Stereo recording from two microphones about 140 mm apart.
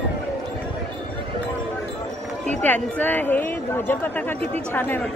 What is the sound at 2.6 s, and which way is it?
Speech, 10° left (ahead or behind).